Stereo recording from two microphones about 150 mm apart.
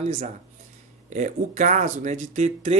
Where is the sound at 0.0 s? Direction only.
45° right (ahead or behind).